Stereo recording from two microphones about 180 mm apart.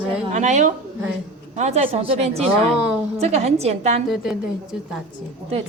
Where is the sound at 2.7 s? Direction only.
5° right (ahead or behind).